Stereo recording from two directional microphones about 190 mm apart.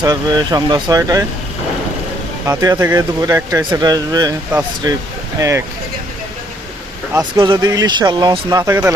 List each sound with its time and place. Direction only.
0.0 s speech: 20° right (ahead or behind)
2.5 s speech: 15° right (ahead or behind)
7.1 s speech: 25° right (ahead or behind)